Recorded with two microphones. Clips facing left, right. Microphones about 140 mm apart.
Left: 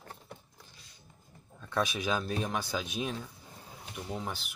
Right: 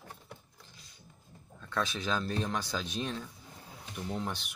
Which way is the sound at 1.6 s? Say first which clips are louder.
Left 2 dB; 15° left (ahead or behind).